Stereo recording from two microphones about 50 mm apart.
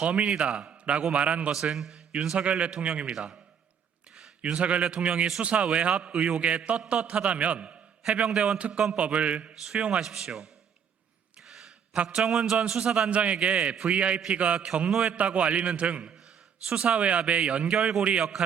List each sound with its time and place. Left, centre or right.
0.0 s a man's voice: right
1.7 s a man's voice: centre
2.4 s a man's voice: right
3.1 s speech: centre
4.5 s a man's voice: right
10.0 s a man's voice: centre
11.4 s a sound: centre
12.0 s speech: centre
13.1 s a man's voice: right